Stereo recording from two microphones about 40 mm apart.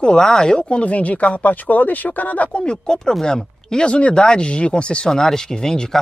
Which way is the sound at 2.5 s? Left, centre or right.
Left.